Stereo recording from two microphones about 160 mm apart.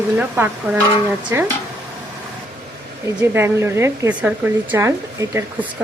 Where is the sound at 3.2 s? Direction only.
15° right (ahead or behind).